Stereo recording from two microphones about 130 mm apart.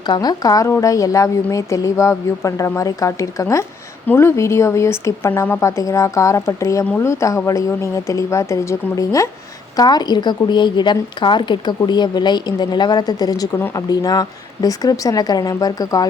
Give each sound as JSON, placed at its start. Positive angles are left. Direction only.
{"t": 0.1, "sound": "a woman's voice", "side_deg": 30}